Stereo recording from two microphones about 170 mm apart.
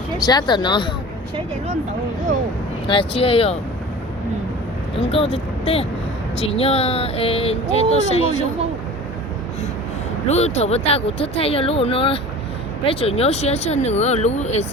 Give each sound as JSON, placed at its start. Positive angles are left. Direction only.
{"t": 0.3, "sound": "speech", "side_deg": 25}
{"t": 2.8, "sound": "speech", "side_deg": 30}
{"t": 4.9, "sound": "speech", "side_deg": 35}
{"t": 10.2, "sound": "speech", "side_deg": 40}